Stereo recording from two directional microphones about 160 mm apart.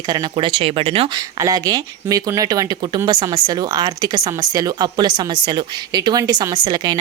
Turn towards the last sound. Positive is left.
turn(degrees=-25)  # may be behind; listen again after turning